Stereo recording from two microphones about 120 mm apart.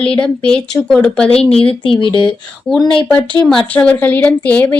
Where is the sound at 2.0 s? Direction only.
45° left (ahead or behind).